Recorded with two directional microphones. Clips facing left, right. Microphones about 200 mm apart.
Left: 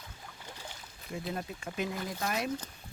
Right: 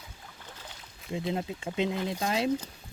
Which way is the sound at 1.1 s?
20° right (ahead or behind).